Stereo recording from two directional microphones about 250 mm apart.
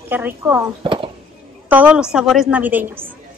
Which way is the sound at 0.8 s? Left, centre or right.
Right.